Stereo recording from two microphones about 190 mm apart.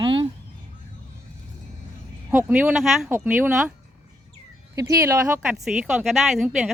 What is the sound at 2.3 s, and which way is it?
Speech, 10° right (ahead or behind).